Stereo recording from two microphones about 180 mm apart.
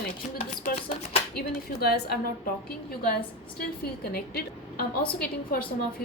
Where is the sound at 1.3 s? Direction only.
60° left (ahead or behind).